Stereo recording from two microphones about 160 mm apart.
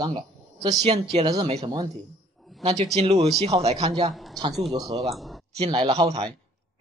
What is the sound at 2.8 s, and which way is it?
Speech, 40° right (ahead or behind).